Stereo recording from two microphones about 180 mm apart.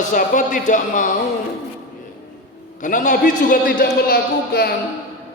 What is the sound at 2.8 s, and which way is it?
A man's voice, 45° left (ahead or behind).